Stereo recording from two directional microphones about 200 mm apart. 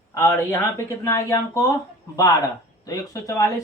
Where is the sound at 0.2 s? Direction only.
15° left (ahead or behind).